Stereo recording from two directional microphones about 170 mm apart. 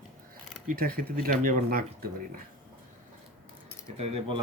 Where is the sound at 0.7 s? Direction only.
55° right (ahead or behind).